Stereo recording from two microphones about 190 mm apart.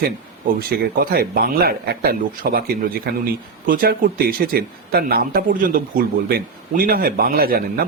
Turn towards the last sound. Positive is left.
turn(degrees=-50)  # may be behind; listen again after turning